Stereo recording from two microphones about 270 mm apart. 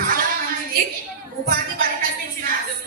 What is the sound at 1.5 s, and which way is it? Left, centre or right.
Music, right.